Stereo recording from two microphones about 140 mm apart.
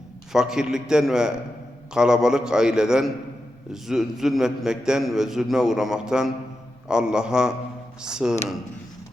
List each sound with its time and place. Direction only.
0.3 s a man's voice: 5° right (ahead or behind)